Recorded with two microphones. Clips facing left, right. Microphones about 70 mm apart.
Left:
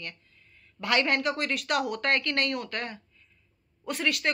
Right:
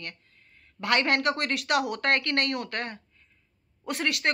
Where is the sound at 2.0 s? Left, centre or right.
Right.